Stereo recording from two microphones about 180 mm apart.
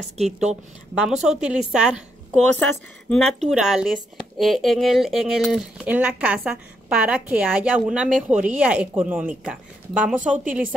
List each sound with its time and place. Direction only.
1.0 s speech: 5° right (ahead or behind)
2.5 s speech: 10° left (ahead or behind); by 10.7 s 10° right (ahead or behind)